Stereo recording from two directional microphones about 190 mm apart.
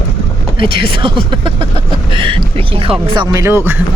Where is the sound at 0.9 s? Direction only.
25° right (ahead or behind).